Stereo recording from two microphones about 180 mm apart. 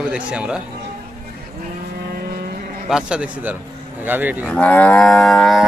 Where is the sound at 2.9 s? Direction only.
5° right (ahead or behind).